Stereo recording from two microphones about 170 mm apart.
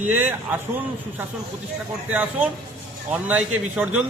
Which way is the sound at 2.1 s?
10° right (ahead or behind).